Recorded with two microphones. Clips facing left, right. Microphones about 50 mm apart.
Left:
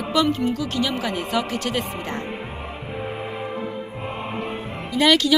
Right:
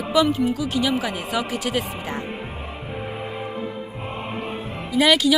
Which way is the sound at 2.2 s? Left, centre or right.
Left.